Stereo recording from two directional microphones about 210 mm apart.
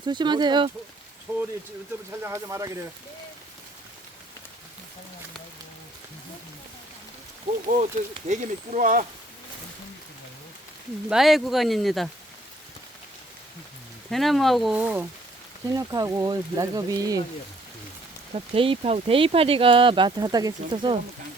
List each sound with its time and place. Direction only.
0.0 s speech: 20° right (ahead or behind)
8.3 s speech: 35° right (ahead or behind)
11.1 s speech: centre (ahead or behind)
14.1 s speech: centre (ahead or behind); by 17.2 s 15° right (ahead or behind)
18.3 s speech: 25° right (ahead or behind)